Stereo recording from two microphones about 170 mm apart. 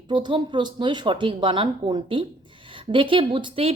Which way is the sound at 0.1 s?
25° right (ahead or behind).